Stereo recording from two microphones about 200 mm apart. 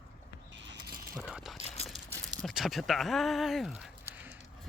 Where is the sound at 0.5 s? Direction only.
65° right (ahead or behind).